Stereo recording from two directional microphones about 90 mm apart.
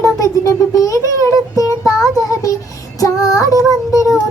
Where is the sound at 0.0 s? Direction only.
40° left (ahead or behind).